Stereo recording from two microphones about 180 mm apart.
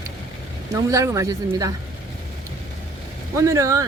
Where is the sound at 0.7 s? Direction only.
15° right (ahead or behind).